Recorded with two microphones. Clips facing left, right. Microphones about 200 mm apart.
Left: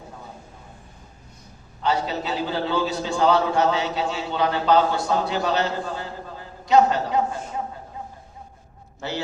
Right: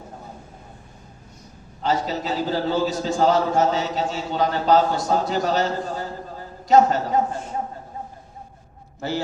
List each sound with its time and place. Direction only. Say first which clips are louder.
1.8 s a man's voice: right 1 dB; 40° right (ahead or behind)
9.0 s a man's voice: right 3 dB; 45° right (ahead or behind)